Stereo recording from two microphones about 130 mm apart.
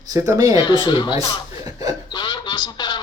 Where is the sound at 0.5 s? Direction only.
35° left (ahead or behind).